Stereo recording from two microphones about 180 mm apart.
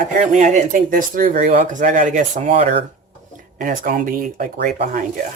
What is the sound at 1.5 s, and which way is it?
Speech, 45° right (ahead or behind).